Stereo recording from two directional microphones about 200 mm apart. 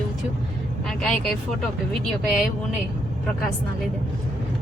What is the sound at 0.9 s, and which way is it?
Vehicle, centre (ahead or behind).